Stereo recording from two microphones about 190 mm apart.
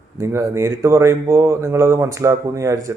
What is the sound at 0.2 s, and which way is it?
Speech, 15° right (ahead or behind).